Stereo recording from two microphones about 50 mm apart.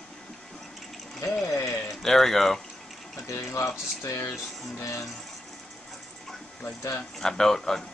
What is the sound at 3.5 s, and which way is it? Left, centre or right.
Speech, left.